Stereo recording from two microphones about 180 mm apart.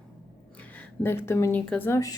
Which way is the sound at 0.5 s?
10° left (ahead or behind).